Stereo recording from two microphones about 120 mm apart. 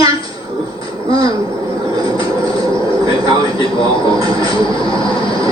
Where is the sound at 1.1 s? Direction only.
45° left (ahead or behind).